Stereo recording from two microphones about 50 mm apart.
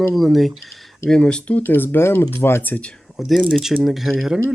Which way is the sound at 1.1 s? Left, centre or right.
Centre.